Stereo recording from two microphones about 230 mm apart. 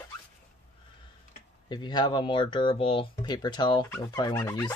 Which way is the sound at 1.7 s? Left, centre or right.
Centre.